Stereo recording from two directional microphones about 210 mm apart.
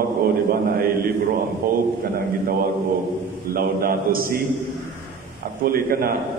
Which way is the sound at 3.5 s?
45° right (ahead or behind).